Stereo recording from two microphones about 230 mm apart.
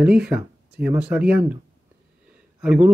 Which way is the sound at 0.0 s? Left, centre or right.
Centre.